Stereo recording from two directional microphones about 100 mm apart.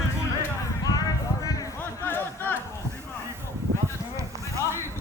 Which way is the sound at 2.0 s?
20° left (ahead or behind).